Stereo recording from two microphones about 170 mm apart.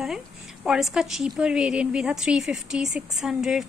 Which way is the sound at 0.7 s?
Centre (ahead or behind).